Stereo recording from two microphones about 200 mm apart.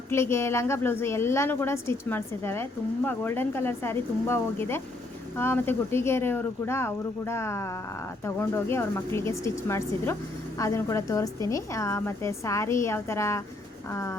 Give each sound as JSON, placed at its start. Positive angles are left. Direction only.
{"t": 0.1, "sound": "a woman's voice", "side_deg": 15}